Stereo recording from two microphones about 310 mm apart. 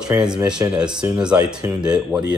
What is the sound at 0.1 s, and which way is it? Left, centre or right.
Speech, centre.